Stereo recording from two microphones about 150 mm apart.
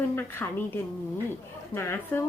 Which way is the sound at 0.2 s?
15° left (ahead or behind).